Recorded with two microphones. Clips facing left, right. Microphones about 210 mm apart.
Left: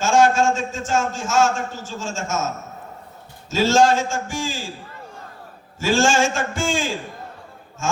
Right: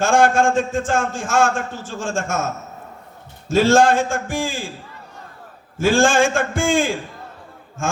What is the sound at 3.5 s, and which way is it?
A man's voice, 55° right (ahead or behind).